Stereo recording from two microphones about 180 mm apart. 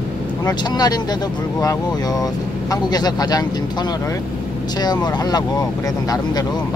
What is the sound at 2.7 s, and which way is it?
Speech, 20° left (ahead or behind).